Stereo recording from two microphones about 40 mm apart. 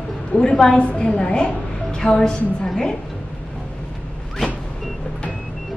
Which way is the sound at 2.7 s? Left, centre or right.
Centre.